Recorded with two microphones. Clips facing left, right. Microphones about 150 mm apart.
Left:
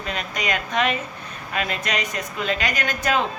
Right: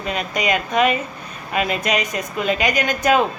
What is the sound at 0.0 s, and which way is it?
Speech, 10° right (ahead or behind).